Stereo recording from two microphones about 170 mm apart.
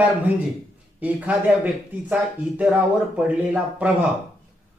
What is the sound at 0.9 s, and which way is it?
Speech, 10° right (ahead or behind).